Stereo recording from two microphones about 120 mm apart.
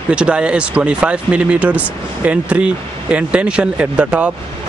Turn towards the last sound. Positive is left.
turn(degrees=-10)  # may be behind; listen again after turning